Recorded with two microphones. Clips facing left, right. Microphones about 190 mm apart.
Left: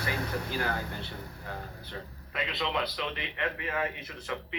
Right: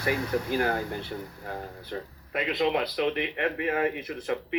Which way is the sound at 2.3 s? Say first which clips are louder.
Right 8 dB; 50° right (ahead or behind).